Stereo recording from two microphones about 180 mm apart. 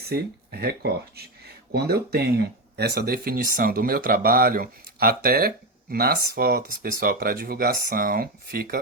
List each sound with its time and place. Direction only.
0.0 s speech: 60° right (ahead or behind)